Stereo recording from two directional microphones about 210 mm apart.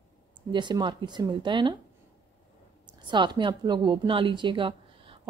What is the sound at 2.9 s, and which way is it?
A woman's voice, 20° right (ahead or behind).